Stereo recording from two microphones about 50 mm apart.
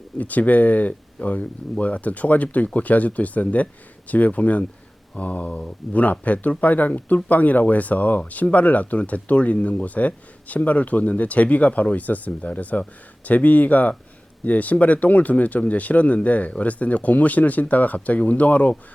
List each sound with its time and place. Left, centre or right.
0.2 s speech: left